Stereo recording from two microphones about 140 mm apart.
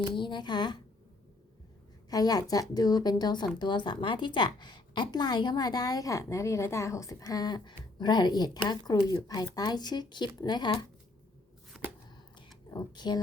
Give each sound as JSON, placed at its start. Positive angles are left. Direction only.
{"t": 0.1, "sound": "speech", "side_deg": 35}
{"t": 2.0, "sound": "a woman's voice", "side_deg": 25}
{"t": 12.7, "sound": "a woman's voice", "side_deg": 30}